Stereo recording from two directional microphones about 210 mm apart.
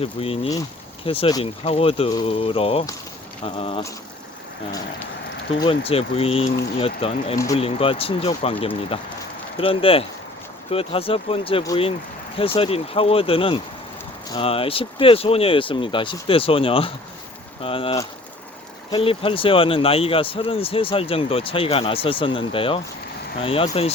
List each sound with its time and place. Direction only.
0.0 s speech: 25° left (ahead or behind)
5.5 s speech: 25° left (ahead or behind)